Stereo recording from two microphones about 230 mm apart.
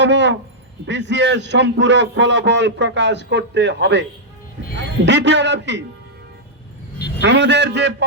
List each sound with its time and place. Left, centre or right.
0.0 s a man's voice: right
7.2 s a man's voice: right